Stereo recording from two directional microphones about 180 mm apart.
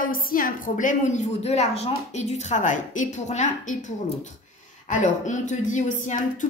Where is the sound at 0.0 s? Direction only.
50° left (ahead or behind).